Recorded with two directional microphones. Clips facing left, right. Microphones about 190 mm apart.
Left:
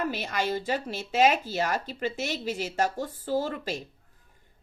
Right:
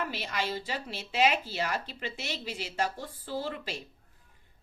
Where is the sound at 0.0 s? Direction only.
50° left (ahead or behind).